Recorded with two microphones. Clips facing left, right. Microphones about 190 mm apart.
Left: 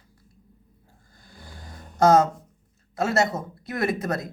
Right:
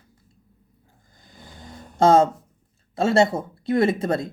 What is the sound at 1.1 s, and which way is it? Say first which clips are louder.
Vehicle: even; 20° right (ahead or behind).